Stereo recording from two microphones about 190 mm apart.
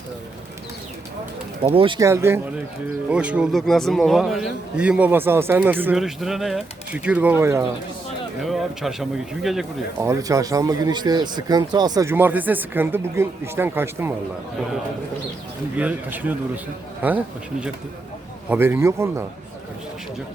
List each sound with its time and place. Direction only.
1.6 s speech: 30° right (ahead or behind)
2.0 s a man's voice: 15° right (ahead or behind)
8.4 s a man's voice: centre (ahead or behind)
10.0 s speech: 15° right (ahead or behind)
15.8 s speech: 10° right (ahead or behind)
18.4 s speech: 10° right (ahead or behind)